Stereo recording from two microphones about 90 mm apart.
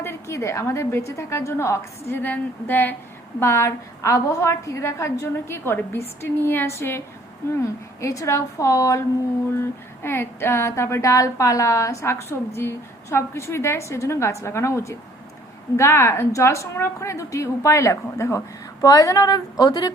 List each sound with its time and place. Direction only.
0.0 s a woman's voice: 30° left (ahead or behind)
3.4 s a woman's voice: 30° left (ahead or behind)
8.0 s speech: 40° left (ahead or behind)
9.6 s speech: 25° left (ahead or behind); by 19.9 s 50° left (ahead or behind)